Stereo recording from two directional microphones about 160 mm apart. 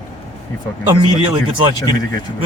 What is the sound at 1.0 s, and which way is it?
Speech, 30° right (ahead or behind).